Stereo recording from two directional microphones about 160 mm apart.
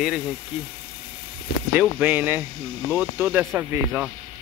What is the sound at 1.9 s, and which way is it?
Speech, 10° right (ahead or behind).